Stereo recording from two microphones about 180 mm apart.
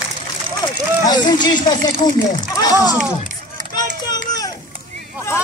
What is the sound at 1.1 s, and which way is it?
Speech, 25° left (ahead or behind).